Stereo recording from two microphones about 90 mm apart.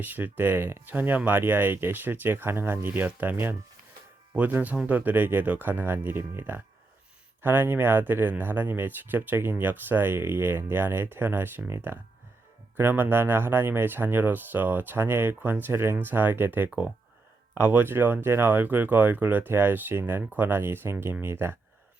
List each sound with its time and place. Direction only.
0.0 s speech: 20° right (ahead or behind)